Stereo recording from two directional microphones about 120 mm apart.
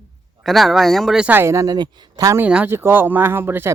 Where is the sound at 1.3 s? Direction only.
20° right (ahead or behind).